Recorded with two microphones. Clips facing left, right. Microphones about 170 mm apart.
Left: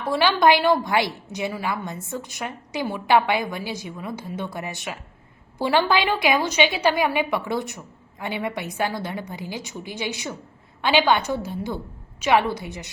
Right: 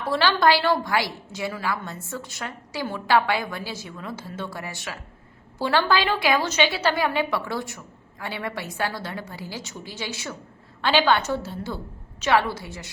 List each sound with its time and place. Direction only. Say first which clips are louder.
0.1 s a woman's voice: left 2 dB; 15° left (ahead or behind)